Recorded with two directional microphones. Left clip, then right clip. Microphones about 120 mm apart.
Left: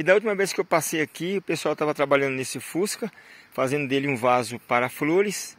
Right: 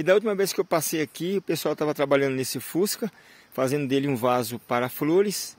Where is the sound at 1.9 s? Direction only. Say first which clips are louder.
Even; 45° right (ahead or behind).